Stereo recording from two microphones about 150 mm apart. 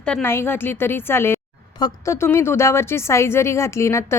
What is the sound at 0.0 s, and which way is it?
A woman's voice, 10° left (ahead or behind).